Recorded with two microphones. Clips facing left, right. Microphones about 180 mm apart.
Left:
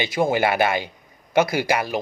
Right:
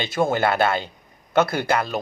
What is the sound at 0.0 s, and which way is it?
Speech, 15° left (ahead or behind).